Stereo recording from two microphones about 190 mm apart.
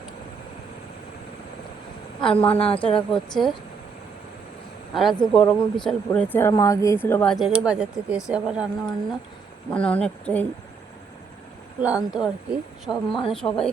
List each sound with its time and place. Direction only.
2.2 s speech: 5° left (ahead or behind)
2.5 s a woman's voice: 30° left (ahead or behind)
2.9 s speech: centre (ahead or behind)
4.9 s speech: centre (ahead or behind)
9.6 s speech: 10° left (ahead or behind)
11.8 s speech: 5° right (ahead or behind)
13.1 s a woman's voice: 25° left (ahead or behind)
13.3 s speech: 5° left (ahead or behind)